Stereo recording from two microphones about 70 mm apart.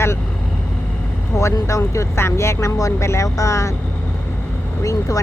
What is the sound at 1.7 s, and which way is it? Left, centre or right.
Speech, left.